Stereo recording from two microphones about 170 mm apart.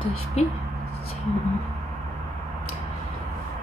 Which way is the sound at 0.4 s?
40° left (ahead or behind).